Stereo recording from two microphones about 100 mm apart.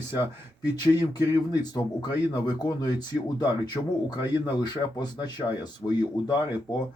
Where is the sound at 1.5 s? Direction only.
45° left (ahead or behind).